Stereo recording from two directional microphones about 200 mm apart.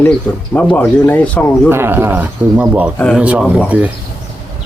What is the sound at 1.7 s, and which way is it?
Speech, 10° right (ahead or behind).